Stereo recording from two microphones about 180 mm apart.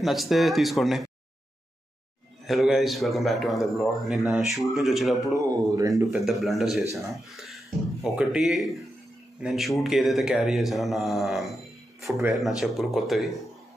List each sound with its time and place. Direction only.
0.0 s a man's voice: centre (ahead or behind)
2.4 s a man's voice: centre (ahead or behind)
5.4 s speech: 20° right (ahead or behind)
6.1 s a man's voice: centre (ahead or behind)